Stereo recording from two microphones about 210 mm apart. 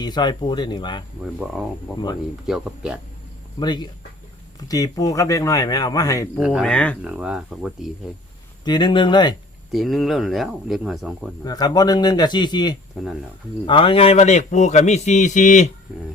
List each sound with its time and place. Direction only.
0.0 s a man's voice: 20° left (ahead or behind)
1.2 s speech: centre (ahead or behind)
3.6 s a man's voice: 20° left (ahead or behind)
6.3 s speech: centre (ahead or behind)
8.6 s a man's voice: 20° left (ahead or behind)
9.7 s speech: centre (ahead or behind)
11.4 s a man's voice: 20° left (ahead or behind)
12.9 s speech: 5° right (ahead or behind)
13.7 s a man's voice: 25° left (ahead or behind)